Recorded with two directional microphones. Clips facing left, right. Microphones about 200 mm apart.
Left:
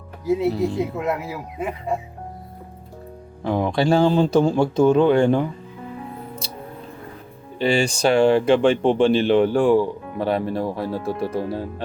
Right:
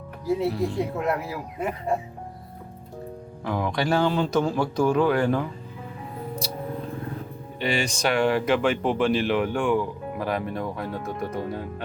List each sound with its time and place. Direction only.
0.3 s speech: centre (ahead or behind)
3.4 s speech: 30° left (ahead or behind)
7.6 s speech: 30° left (ahead or behind)